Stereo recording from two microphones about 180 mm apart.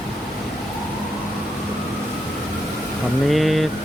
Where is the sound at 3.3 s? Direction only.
Centre (ahead or behind).